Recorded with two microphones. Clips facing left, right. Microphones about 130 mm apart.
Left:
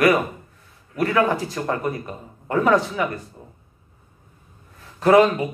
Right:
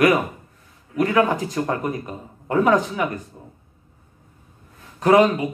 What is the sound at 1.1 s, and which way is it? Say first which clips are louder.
A man's voice: right 1 dB; 15° right (ahead or behind).